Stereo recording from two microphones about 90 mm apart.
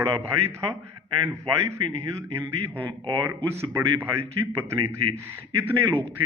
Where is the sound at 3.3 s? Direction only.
30° right (ahead or behind).